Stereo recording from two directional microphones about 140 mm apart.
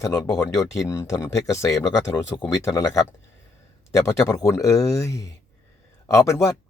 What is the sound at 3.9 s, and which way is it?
Speech, 20° left (ahead or behind).